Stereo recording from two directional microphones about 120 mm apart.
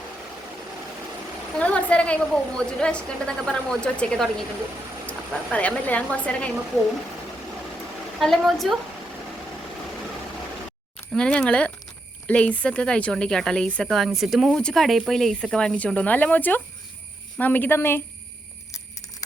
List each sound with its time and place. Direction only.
1.5 s a woman's voice: 10° left (ahead or behind)
8.2 s a woman's voice: centre (ahead or behind)
11.1 s a woman's voice: 5° left (ahead or behind)